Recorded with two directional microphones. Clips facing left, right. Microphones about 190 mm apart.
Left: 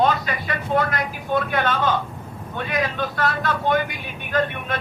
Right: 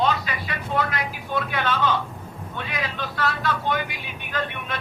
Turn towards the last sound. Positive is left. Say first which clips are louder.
# left 6 dB
turn(degrees=45)  # may be behind; listen again after turning